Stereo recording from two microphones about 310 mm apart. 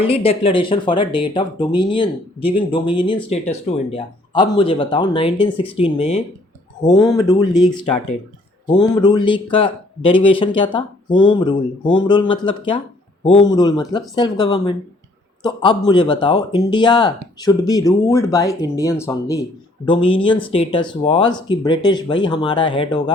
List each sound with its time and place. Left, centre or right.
0.0 s speech: centre
8.6 s speech: centre